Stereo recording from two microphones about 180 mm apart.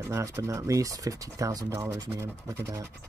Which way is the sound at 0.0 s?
15° right (ahead or behind).